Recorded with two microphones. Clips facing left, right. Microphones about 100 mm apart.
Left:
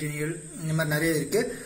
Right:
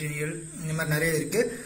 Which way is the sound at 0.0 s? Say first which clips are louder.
Left 2 dB; centre (ahead or behind).